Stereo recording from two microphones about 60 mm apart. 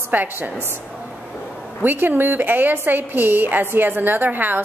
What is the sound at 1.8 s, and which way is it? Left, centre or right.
A woman's voice, right.